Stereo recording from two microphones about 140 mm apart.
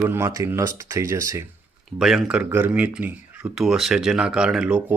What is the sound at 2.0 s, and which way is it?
Speech, centre (ahead or behind).